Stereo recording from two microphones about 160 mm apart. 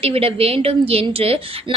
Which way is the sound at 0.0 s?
35° right (ahead or behind).